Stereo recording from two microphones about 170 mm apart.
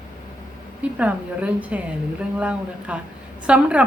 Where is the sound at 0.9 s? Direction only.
10° right (ahead or behind).